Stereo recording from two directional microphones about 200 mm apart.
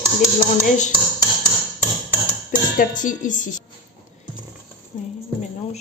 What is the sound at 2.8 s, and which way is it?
Speech, 40° left (ahead or behind).